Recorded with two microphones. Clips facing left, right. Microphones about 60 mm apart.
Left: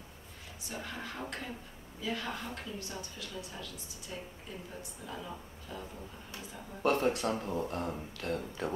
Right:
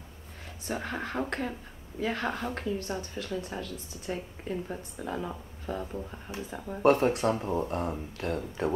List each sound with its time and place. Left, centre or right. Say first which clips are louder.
0.7 s speech: right 8 dB; right
6.9 s speech: right 6 dB; right